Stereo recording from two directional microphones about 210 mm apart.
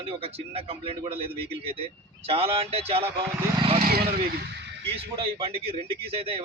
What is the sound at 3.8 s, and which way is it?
Speech, 45° right (ahead or behind).